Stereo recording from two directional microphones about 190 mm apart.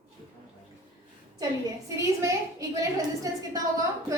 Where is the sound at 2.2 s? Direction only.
15° right (ahead or behind).